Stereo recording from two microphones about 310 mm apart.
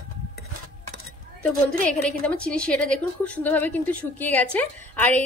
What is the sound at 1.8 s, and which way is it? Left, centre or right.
A woman's voice, centre.